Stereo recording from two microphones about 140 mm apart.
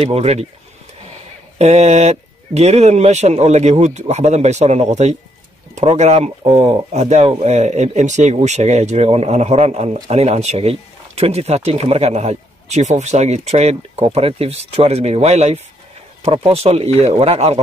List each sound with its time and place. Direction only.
0.0 s speech: 50° right (ahead or behind)
1.6 s speech: 50° right (ahead or behind)